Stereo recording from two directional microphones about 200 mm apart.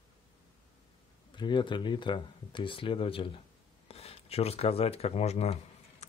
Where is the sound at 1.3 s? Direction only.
25° left (ahead or behind).